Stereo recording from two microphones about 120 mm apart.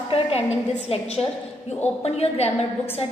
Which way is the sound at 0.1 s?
55° left (ahead or behind).